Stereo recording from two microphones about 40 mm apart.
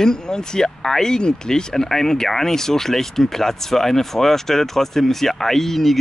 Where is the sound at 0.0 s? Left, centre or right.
Centre.